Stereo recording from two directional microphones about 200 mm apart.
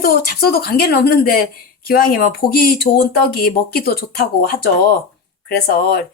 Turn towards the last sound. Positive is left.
turn(degrees=50)  # may be behind; listen again after turning